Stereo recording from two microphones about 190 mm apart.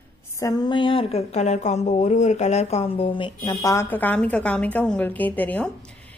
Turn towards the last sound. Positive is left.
turn(degrees=5)  # may be behind; listen again after turning